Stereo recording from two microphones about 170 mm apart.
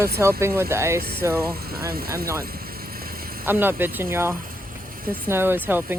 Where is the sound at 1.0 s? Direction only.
65° right (ahead or behind).